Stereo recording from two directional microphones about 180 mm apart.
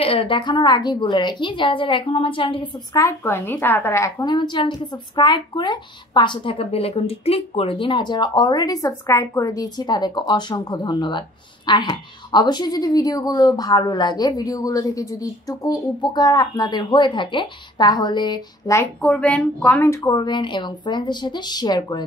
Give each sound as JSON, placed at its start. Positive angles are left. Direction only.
{"t": 0.0, "sound": "a woman's voice", "side_deg": 30}